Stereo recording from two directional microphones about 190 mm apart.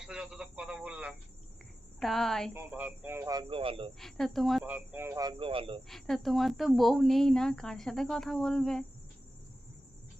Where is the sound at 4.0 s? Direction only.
Centre (ahead or behind); by 5.8 s 30° right (ahead or behind).